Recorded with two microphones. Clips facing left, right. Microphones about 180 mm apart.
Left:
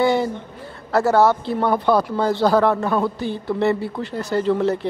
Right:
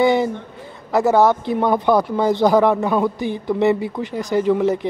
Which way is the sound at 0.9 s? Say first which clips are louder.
Right 1 dB; 15° right (ahead or behind).